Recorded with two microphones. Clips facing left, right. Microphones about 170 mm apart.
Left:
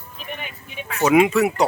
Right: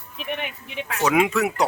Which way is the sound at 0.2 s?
70° right (ahead or behind).